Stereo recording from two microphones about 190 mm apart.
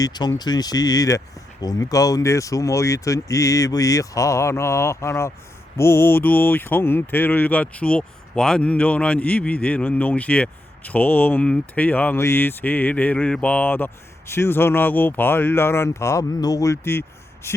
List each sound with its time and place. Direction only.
0.0 s speech: 20° left (ahead or behind)